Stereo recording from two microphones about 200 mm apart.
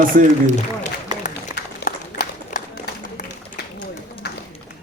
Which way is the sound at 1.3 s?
50° left (ahead or behind).